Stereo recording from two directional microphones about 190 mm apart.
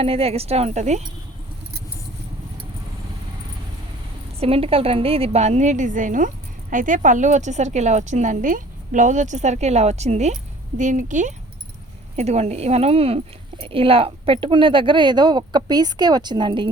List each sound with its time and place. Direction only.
0.0 s a woman's voice: 30° right (ahead or behind)
4.4 s a woman's voice: 30° right (ahead or behind)